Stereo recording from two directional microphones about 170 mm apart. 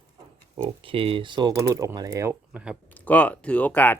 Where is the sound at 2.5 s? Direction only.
5° right (ahead or behind).